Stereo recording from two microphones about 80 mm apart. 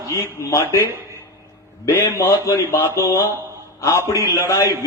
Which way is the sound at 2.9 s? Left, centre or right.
Left.